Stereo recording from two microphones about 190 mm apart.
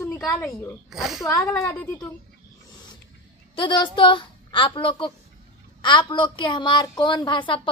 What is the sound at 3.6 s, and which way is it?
A woman's voice, 25° left (ahead or behind).